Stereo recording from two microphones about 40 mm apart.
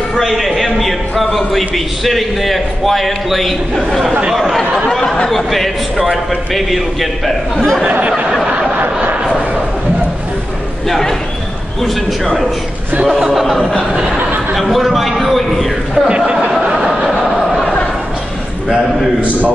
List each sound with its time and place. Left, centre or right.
0.2 s a man's voice: centre
5.0 s chatter: centre
5.3 s a man's voice: centre
7.8 s speech: right
10.9 s a man's voice: centre
13.2 s a sound: centre
14.5 s a man's voice: centre
16.1 s speech: right
16.7 s a sound: centre